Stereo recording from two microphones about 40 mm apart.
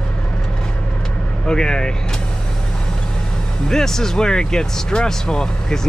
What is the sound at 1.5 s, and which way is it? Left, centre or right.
Speech, centre.